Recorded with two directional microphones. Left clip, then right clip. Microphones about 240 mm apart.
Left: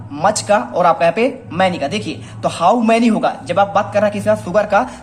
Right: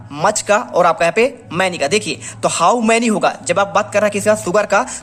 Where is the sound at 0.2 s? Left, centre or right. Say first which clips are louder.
Even; right.